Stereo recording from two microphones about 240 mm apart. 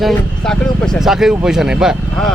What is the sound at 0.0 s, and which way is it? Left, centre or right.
Speech, centre.